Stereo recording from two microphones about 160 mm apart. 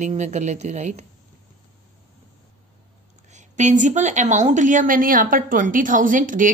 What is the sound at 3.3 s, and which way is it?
A woman's voice, 50° right (ahead or behind).